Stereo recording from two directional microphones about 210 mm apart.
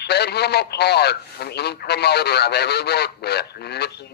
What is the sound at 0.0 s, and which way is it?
A man's voice, 50° left (ahead or behind).